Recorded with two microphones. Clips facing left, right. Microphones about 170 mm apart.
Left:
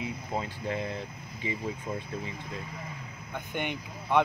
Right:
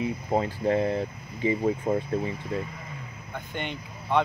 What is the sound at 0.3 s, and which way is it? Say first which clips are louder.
Speech: right 10 dB; 40° right (ahead or behind).